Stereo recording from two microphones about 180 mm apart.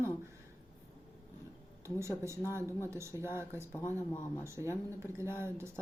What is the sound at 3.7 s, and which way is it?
Speech, 10° left (ahead or behind).